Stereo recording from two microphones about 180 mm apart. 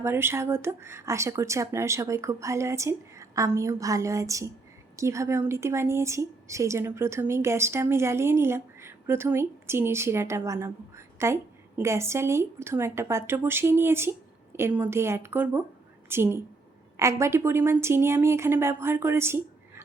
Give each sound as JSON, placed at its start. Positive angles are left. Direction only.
{"t": 0.0, "sound": "a woman's voice", "side_deg": -15}